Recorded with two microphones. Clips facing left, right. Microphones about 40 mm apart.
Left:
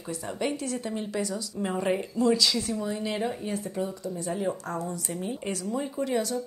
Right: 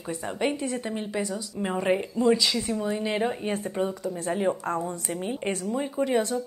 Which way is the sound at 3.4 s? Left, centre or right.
Right.